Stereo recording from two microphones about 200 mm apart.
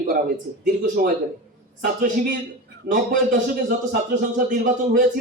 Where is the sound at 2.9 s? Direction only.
40° right (ahead or behind).